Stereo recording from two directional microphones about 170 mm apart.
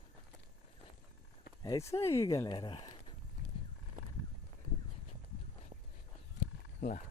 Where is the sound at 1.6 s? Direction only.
20° left (ahead or behind).